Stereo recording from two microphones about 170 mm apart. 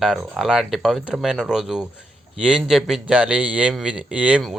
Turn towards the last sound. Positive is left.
turn(degrees=-5)  # may be behind; listen again after turning